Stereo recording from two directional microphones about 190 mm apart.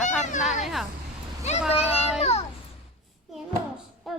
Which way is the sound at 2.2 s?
35° left (ahead or behind).